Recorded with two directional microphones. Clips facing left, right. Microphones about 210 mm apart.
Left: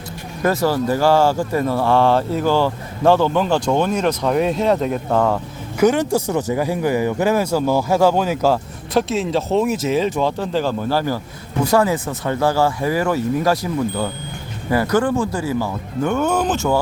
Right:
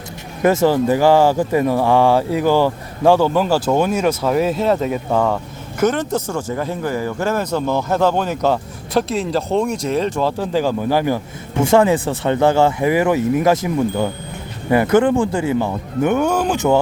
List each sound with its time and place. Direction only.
0.4 s speech: 20° right (ahead or behind); by 5.4 s 5° right (ahead or behind)
5.9 s speech: 10° left (ahead or behind); by 16.6 s 10° right (ahead or behind)